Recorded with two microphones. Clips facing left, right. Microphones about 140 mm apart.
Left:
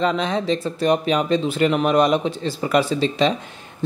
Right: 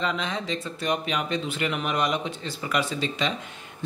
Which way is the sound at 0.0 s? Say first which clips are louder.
Left 8 dB; 40° left (ahead or behind).